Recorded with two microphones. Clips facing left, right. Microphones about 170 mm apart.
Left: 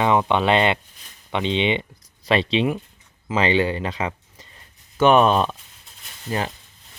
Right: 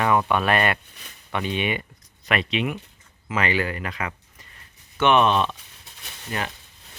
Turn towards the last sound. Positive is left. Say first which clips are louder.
# left 4 dB
turn(degrees=30)  # may be behind; listen again after turning